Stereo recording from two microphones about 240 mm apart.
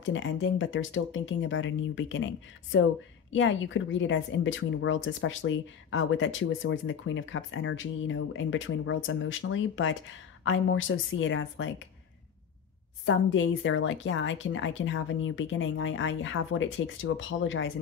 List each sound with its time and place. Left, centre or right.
0.0 s speech: left
13.0 s speech: left